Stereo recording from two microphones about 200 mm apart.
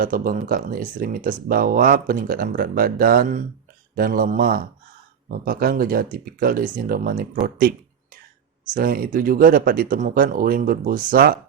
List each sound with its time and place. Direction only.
0.0 s speech: 45° right (ahead or behind)
8.7 s speech: 45° right (ahead or behind)